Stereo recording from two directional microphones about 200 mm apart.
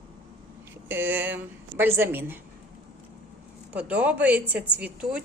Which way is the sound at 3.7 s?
5° right (ahead or behind).